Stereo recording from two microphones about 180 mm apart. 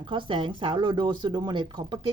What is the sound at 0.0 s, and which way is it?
Speech, 25° right (ahead or behind).